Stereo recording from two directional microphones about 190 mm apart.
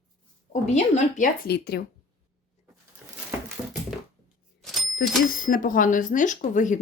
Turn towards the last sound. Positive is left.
turn(degrees=40)  # may be behind; listen again after turning